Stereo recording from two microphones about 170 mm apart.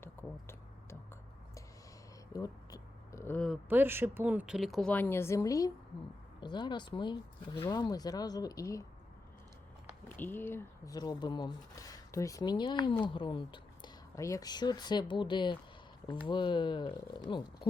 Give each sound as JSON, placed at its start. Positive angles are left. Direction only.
{"t": 0.0, "sound": "a sound", "side_deg": 15}
{"t": 3.7, "sound": "speech", "side_deg": -10}
{"t": 10.2, "sound": "speech", "side_deg": 10}
{"t": 14.2, "sound": "speech", "side_deg": 20}